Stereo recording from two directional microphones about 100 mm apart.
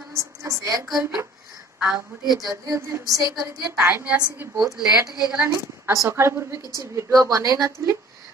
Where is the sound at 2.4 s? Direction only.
35° right (ahead or behind).